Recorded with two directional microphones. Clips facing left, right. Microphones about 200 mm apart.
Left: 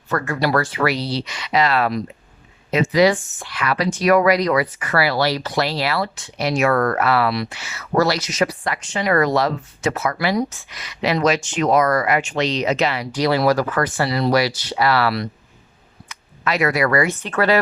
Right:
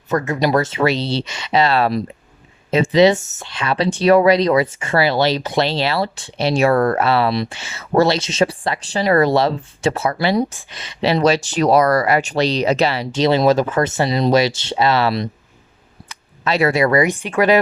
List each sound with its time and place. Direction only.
0.1 s speech: 20° right (ahead or behind)